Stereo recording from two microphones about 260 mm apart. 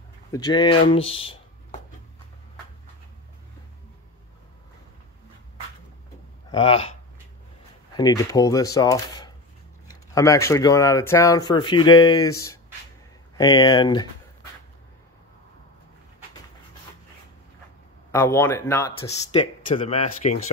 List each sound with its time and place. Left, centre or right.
0.3 s speech: centre
6.5 s speech: left
7.9 s speech: centre
18.1 s speech: centre; by 20.3 s left